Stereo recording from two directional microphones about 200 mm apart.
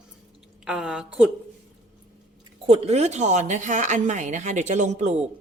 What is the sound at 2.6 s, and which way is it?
Speech, 30° right (ahead or behind).